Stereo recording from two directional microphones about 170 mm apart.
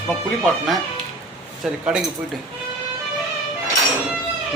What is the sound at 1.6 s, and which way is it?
Speech, centre (ahead or behind).